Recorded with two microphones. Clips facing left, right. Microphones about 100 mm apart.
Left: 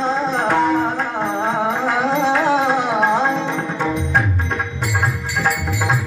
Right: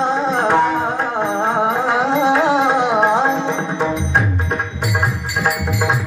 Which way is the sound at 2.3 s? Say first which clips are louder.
Right 2 dB; 20° right (ahead or behind).